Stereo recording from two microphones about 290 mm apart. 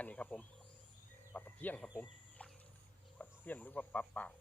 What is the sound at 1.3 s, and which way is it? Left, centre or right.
Chicken, centre.